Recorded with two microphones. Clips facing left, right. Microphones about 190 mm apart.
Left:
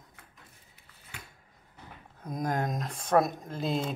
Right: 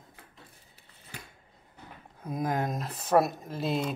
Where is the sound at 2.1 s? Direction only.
5° right (ahead or behind).